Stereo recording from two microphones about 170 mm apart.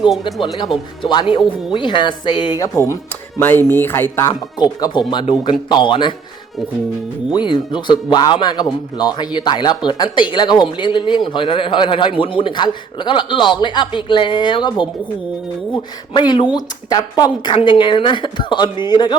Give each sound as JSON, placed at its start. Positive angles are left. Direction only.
{"t": 0.1, "sound": "speech", "side_deg": 0}
{"t": 1.1, "sound": "a man's voice", "side_deg": 30}
{"t": 7.3, "sound": "a man's voice", "side_deg": 25}